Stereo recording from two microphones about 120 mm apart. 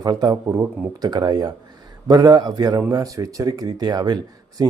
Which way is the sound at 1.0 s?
35° right (ahead or behind).